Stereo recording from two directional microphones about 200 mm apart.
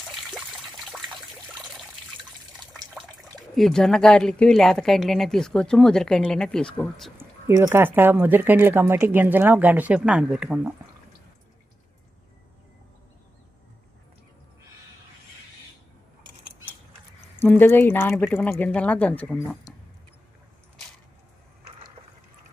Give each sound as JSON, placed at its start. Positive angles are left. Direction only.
{"t": 0.2, "sound": "trickle", "side_deg": 0}
{"t": 2.6, "sound": "water", "side_deg": -20}
{"t": 3.5, "sound": "a woman's voice", "side_deg": 0}
{"t": 7.2, "sound": "speech", "side_deg": -15}
{"t": 17.4, "sound": "speech", "side_deg": 10}